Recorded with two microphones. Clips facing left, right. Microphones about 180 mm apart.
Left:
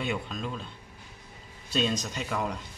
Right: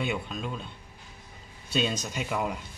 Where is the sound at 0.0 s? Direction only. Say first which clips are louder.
Right 1 dB; 5° right (ahead or behind).